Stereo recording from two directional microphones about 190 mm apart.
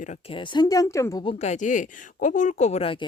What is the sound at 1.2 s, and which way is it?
Speech, 30° left (ahead or behind).